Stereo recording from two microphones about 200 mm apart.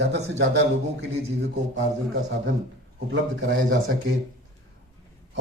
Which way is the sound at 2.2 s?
65° right (ahead or behind).